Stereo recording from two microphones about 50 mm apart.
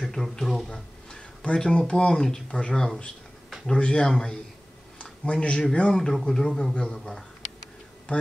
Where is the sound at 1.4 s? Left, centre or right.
Centre.